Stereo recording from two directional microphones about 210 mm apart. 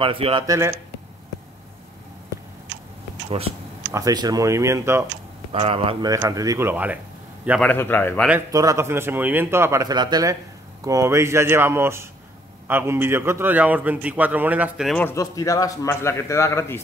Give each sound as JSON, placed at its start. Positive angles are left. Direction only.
{"t": 0.0, "sound": "speech", "side_deg": -25}
{"t": 3.3, "sound": "speech", "side_deg": -25}
{"t": 3.9, "sound": "a man's voice", "side_deg": -15}
{"t": 5.5, "sound": "a man's voice", "side_deg": -30}
{"t": 7.6, "sound": "a man's voice", "side_deg": 10}
{"t": 8.3, "sound": "a man's voice", "side_deg": -15}
{"t": 15.0, "sound": "a man's voice", "side_deg": 15}